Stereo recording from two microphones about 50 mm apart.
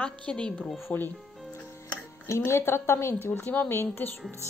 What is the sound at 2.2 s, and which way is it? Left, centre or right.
A woman's voice, left.